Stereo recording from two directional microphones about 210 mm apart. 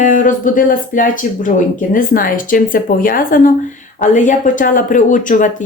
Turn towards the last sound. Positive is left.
turn(degrees=40)  # may be behind; listen again after turning